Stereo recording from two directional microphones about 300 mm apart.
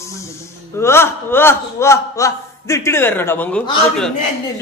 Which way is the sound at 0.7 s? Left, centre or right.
Centre.